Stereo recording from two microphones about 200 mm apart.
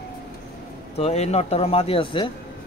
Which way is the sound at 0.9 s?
30° left (ahead or behind).